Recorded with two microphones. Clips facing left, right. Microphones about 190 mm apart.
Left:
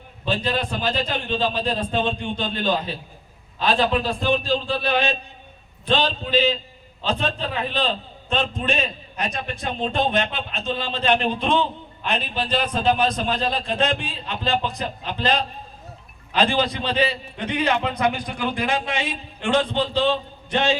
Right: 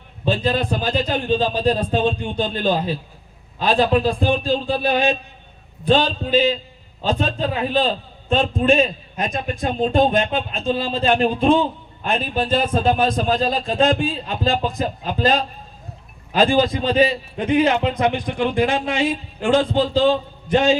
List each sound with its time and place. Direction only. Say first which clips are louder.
0.3 s a man's voice: right 4 dB; 45° right (ahead or behind)
18.0 s a man's voice: right 4 dB; 30° right (ahead or behind)